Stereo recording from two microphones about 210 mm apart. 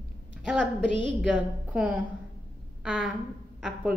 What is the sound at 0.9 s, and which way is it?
Speech, 25° left (ahead or behind).